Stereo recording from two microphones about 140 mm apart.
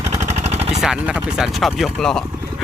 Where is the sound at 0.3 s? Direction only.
50° right (ahead or behind).